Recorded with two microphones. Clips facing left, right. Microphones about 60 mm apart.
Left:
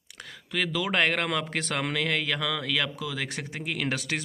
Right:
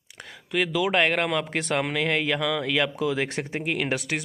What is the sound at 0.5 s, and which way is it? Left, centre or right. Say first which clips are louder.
Speech: right 4 dB; centre.